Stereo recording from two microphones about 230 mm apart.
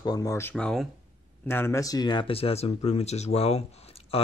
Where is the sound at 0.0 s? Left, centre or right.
Centre.